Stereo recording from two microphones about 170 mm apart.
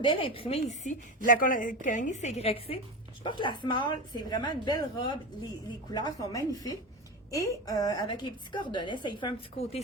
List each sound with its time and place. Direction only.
0.0 s a woman's voice: 30° left (ahead or behind)